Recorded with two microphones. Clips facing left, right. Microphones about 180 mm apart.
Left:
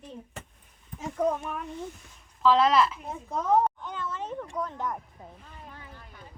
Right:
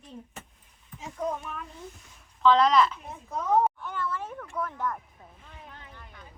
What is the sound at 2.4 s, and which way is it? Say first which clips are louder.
Speech: right 1 dB; 5° left (ahead or behind).